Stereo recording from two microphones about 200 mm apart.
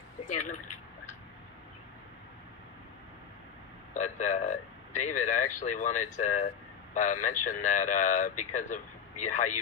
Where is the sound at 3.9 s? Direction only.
40° left (ahead or behind).